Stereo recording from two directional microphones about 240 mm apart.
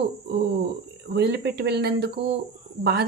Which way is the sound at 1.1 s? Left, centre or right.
Right.